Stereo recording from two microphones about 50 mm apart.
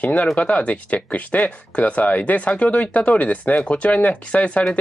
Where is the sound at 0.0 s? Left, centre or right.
Left.